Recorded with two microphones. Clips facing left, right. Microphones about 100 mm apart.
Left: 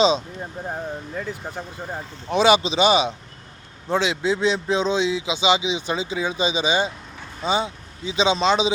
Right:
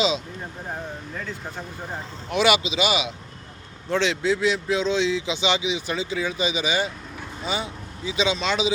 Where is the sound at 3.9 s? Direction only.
15° left (ahead or behind).